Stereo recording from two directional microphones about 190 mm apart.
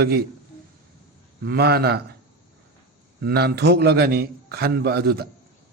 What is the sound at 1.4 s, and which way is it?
Speech, 55° right (ahead or behind).